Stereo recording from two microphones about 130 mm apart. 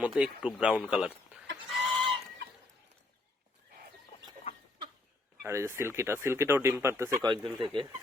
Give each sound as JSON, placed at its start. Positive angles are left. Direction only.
{"t": 0.0, "sound": "speech", "side_deg": -10}
{"t": 4.5, "sound": "a sound", "side_deg": 50}
{"t": 5.5, "sound": "speech", "side_deg": -20}
{"t": 7.2, "sound": "speech", "side_deg": -35}